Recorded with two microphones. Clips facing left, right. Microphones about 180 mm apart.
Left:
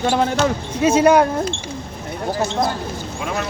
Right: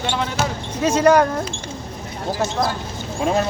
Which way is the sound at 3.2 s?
30° right (ahead or behind).